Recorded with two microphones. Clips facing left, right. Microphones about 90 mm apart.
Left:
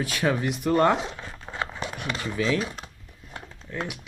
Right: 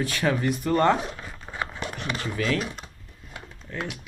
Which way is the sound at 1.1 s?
5° left (ahead or behind).